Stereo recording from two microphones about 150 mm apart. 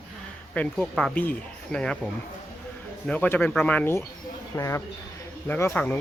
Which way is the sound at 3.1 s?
10° left (ahead or behind).